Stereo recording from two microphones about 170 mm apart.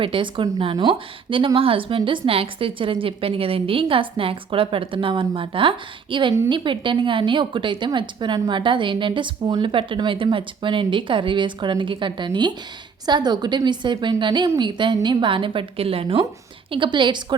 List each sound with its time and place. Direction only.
0.0 s a woman's voice: 30° right (ahead or behind)